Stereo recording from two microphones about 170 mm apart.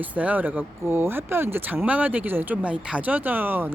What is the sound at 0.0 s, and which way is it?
Speech, 10° right (ahead or behind).